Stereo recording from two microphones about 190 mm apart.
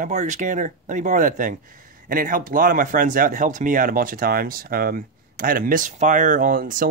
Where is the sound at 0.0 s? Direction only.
40° right (ahead or behind).